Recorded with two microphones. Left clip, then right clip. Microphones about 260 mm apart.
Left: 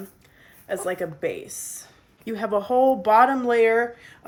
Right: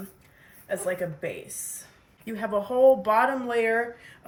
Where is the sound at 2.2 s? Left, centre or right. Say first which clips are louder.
Left 3 dB; left.